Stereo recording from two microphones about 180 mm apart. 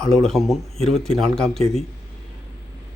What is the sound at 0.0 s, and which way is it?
Speech, 5° left (ahead or behind).